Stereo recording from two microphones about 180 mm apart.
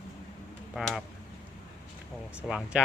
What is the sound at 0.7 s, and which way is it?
Speech, centre (ahead or behind).